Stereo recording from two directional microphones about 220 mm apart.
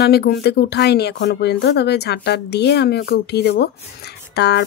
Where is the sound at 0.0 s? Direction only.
50° left (ahead or behind).